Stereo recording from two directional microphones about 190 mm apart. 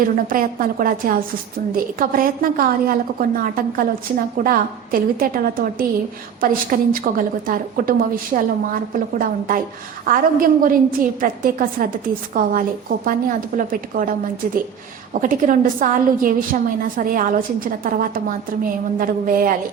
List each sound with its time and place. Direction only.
0.0 s a woman's voice: 45° right (ahead or behind)